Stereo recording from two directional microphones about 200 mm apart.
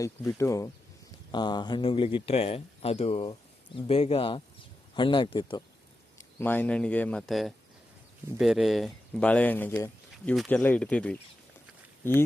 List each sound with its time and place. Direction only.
0.0 s speech: 15° left (ahead or behind)
6.1 s speech: 10° left (ahead or behind)